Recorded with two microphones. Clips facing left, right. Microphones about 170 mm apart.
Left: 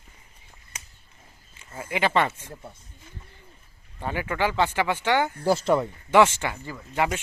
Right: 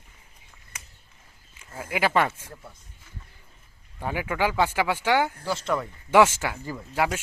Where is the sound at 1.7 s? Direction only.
5° right (ahead or behind).